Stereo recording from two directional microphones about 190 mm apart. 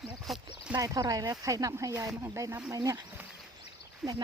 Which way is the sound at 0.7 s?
20° right (ahead or behind).